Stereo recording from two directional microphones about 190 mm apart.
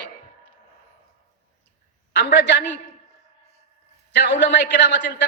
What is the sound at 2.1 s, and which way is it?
Speech, 65° left (ahead or behind).